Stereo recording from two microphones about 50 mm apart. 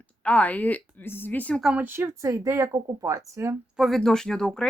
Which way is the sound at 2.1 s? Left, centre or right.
Right.